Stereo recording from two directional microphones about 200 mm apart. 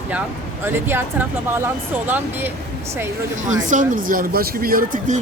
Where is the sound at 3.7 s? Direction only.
40° right (ahead or behind).